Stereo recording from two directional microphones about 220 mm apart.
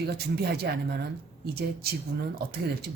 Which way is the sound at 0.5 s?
45° right (ahead or behind).